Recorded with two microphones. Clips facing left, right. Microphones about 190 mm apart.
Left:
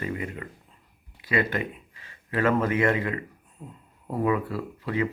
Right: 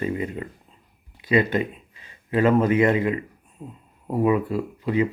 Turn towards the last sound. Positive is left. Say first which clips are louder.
# right 5 dB
turn(degrees=-20)  # may be behind; listen again after turning